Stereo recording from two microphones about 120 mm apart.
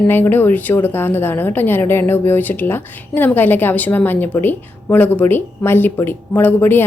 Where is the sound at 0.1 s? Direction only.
15° left (ahead or behind).